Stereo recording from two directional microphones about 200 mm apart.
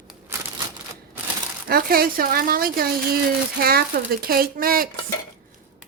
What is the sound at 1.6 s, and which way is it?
Speech, 50° right (ahead or behind).